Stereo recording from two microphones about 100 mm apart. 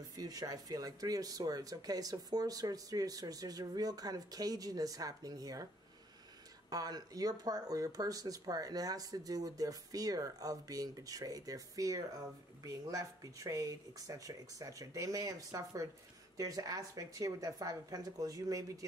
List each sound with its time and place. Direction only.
0.1 s speech: 40° right (ahead or behind)
6.7 s speech: 40° right (ahead or behind)